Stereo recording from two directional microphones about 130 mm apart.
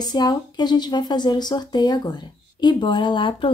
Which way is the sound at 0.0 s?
35° left (ahead or behind).